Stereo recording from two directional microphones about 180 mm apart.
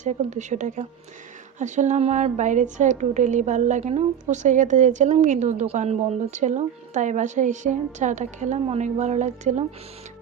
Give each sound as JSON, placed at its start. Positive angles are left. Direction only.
{"t": 0.0, "sound": "a woman's voice", "side_deg": -40}